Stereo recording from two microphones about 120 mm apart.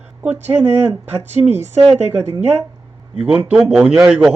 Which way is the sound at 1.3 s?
70° right (ahead or behind).